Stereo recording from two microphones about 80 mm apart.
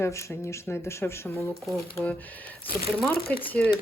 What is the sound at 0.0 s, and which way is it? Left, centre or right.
Speech, left.